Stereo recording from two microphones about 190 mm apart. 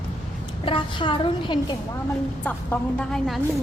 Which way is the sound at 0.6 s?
25° left (ahead or behind).